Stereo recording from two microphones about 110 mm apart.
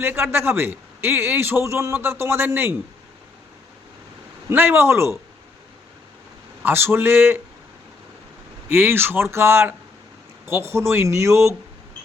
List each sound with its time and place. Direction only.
0.0 s a man's voice: 20° right (ahead or behind)
4.4 s a man's voice: 20° right (ahead or behind)
6.6 s a man's voice: 20° right (ahead or behind)
8.7 s a man's voice: 20° right (ahead or behind)